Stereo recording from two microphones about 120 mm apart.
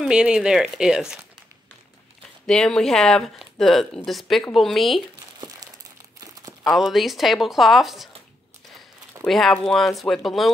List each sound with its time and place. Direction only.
0.0 s speech: 5° right (ahead or behind)
2.4 s speech: 5° left (ahead or behind)
6.1 s crumpling: 30° right (ahead or behind)
6.6 s speech: centre (ahead or behind)
9.2 s speech: 5° left (ahead or behind)